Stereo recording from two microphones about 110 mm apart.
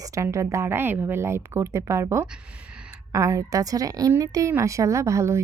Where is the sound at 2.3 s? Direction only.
10° right (ahead or behind).